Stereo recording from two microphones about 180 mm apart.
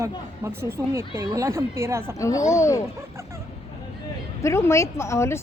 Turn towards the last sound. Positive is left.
turn(degrees=15)  # may be behind; listen again after turning